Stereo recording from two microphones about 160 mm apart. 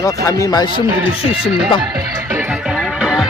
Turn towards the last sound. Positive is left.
turn(degrees=-5)  # may be behind; listen again after turning